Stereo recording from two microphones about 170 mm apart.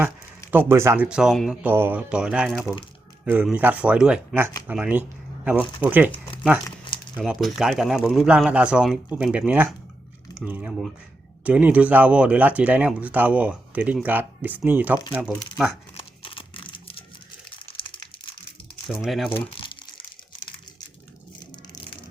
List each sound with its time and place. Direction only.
0.5 s speech: 15° right (ahead or behind)
6.7 s a sound: 25° left (ahead or behind)
7.2 s speech: centre (ahead or behind)
16.0 s a sound: 30° left (ahead or behind)
17.7 s computer keyboard: 25° left (ahead or behind)
19.0 s speech: centre (ahead or behind)